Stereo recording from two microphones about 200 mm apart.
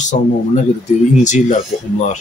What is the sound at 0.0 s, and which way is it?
Speech, 35° left (ahead or behind).